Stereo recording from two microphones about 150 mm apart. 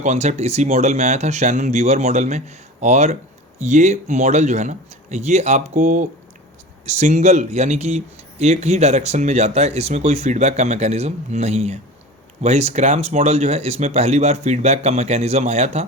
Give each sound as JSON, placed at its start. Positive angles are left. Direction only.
{"t": 0.0, "sound": "speech", "side_deg": -50}